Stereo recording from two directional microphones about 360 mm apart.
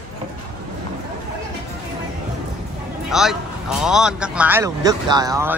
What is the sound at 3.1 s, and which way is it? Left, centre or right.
A man's voice, centre.